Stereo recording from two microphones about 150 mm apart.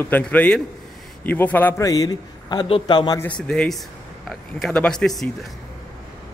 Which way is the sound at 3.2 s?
5° left (ahead or behind).